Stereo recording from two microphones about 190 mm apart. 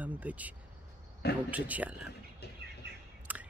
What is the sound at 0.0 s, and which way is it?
Speech, 10° right (ahead or behind).